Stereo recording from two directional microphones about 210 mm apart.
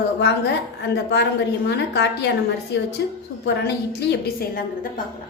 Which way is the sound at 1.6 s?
55° left (ahead or behind).